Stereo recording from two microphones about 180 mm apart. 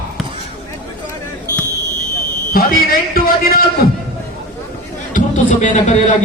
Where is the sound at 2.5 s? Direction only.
55° left (ahead or behind).